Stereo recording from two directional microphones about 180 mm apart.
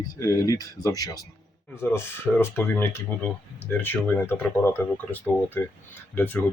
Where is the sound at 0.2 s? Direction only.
20° left (ahead or behind).